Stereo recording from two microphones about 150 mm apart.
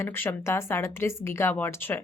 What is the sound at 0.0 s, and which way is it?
Speech, 15° left (ahead or behind).